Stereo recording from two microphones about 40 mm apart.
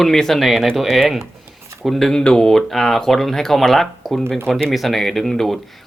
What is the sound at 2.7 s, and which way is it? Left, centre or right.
Speech, centre.